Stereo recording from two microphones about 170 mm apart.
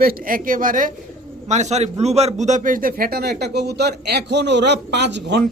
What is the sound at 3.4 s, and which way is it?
A man's voice, 75° right (ahead or behind).